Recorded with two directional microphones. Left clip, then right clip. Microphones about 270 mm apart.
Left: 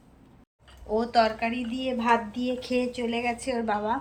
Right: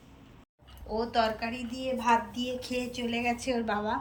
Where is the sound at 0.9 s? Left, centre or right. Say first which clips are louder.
Left 5 dB; centre.